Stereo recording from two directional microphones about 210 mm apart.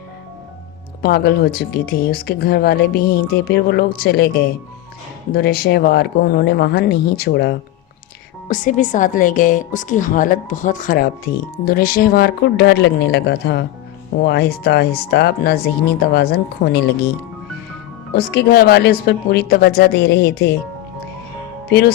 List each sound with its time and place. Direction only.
1.0 s speech: 50° left (ahead or behind)
8.4 s a woman's voice: 40° left (ahead or behind)
18.1 s speech: 50° left (ahead or behind)
21.7 s speech: 50° left (ahead or behind)